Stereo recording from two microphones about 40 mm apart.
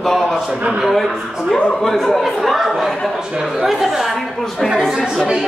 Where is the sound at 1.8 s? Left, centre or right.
Centre.